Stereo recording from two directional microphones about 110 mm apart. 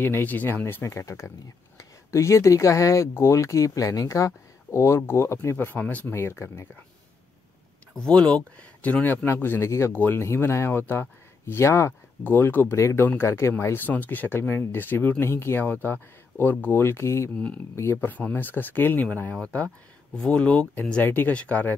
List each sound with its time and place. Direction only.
0.0 s speech: 20° left (ahead or behind)
7.9 s speech: 10° left (ahead or behind)